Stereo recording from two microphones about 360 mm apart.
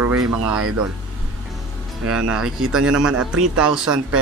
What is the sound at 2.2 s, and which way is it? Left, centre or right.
Speech, right.